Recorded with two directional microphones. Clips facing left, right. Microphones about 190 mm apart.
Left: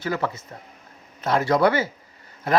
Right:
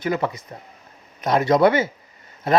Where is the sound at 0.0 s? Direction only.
20° right (ahead or behind).